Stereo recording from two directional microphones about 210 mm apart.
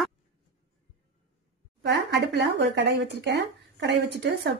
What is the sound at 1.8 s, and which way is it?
Speech, 55° right (ahead or behind).